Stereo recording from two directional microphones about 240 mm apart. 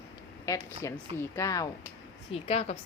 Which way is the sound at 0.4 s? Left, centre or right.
Centre.